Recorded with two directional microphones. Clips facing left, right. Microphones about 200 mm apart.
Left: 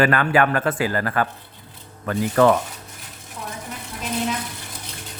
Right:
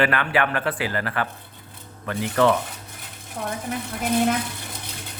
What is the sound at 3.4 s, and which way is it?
Speech, 55° right (ahead or behind).